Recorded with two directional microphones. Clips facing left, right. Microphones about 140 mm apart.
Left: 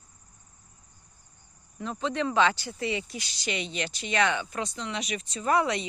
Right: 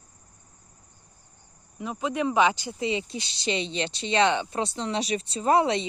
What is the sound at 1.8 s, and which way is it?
Speech, 10° right (ahead or behind).